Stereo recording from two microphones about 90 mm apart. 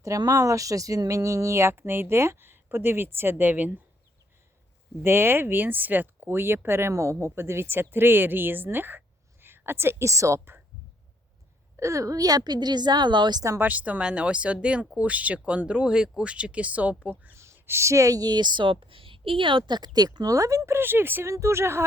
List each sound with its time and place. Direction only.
0.2 s speech: 40° right (ahead or behind); by 3.8 s 20° right (ahead or behind)
5.0 s speech: 25° right (ahead or behind)
11.8 s a woman's voice: 35° right (ahead or behind); by 13.4 s 60° right (ahead or behind)
13.6 s speech: 20° right (ahead or behind)
17.3 s a woman's voice: 30° right (ahead or behind)